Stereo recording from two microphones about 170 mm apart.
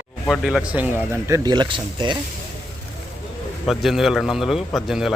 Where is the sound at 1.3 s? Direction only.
25° right (ahead or behind).